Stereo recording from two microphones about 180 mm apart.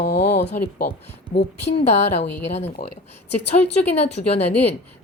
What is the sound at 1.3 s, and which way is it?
Speech, 60° left (ahead or behind).